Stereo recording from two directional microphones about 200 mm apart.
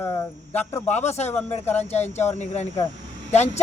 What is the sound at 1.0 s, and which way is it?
Speech, 35° left (ahead or behind).